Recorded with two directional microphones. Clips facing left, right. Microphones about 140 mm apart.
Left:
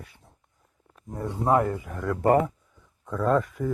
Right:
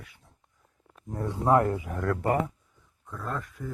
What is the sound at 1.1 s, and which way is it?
Speech, centre (ahead or behind).